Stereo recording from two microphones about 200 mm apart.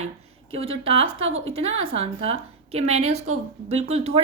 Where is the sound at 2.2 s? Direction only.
30° right (ahead or behind).